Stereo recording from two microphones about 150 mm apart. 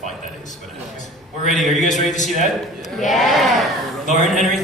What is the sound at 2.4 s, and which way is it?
Speech, 55° left (ahead or behind).